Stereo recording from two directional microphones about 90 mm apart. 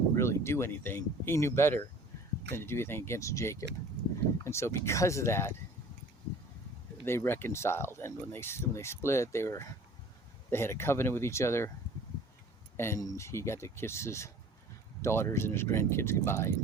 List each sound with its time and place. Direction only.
0.2 s speech: 30° left (ahead or behind)
7.0 s speech: 25° left (ahead or behind)
12.7 s speech: 30° left (ahead or behind)